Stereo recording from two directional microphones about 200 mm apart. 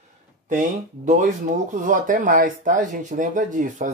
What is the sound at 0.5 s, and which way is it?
Speech, 40° right (ahead or behind).